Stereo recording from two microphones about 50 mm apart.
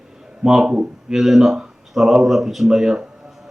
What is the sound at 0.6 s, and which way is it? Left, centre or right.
Speech, centre.